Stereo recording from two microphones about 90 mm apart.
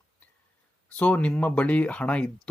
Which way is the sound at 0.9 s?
15° left (ahead or behind).